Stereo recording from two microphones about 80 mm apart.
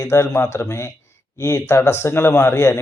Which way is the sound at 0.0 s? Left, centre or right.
Left.